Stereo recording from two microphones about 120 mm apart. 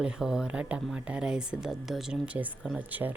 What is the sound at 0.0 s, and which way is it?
Speech, 5° right (ahead or behind).